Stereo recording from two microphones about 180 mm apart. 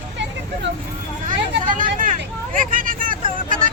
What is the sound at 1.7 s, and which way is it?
Vehicle, 45° right (ahead or behind).